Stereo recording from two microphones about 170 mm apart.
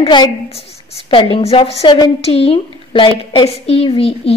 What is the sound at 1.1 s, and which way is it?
Child singing, 30° left (ahead or behind).